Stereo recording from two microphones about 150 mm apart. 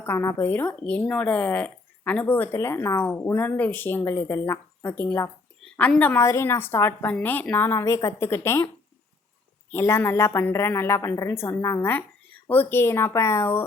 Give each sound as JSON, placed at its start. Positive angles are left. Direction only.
{"t": 0.0, "sound": "speech", "side_deg": 15}
{"t": 9.7, "sound": "speech", "side_deg": 15}